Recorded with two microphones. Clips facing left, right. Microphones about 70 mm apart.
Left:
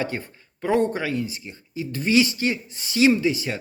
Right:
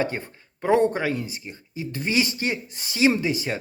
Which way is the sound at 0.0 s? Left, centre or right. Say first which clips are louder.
Right 2 dB; right.